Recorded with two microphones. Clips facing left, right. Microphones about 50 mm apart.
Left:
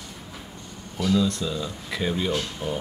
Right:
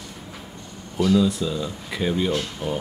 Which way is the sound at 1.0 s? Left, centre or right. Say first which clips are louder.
Right 3 dB; centre.